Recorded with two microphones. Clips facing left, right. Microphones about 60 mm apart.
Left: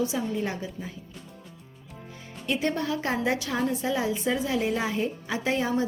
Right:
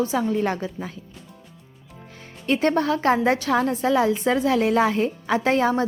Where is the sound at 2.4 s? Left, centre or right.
Right.